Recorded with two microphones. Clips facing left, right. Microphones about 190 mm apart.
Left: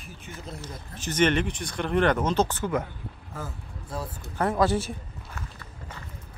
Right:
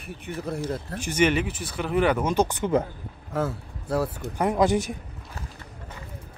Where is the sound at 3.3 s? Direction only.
70° right (ahead or behind).